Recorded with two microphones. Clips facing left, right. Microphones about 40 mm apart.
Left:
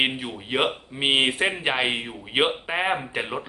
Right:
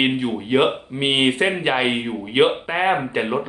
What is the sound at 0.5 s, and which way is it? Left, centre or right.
Speech, centre.